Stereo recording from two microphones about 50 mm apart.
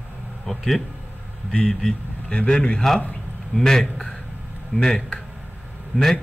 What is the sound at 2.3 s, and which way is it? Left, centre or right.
A man's voice, centre.